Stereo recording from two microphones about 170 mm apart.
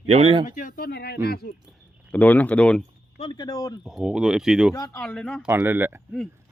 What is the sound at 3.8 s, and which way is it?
Speech, 5° right (ahead or behind).